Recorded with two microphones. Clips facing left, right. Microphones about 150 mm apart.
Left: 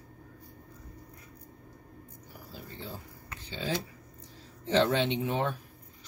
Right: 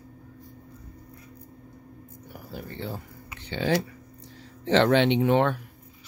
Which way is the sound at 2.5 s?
70° right (ahead or behind).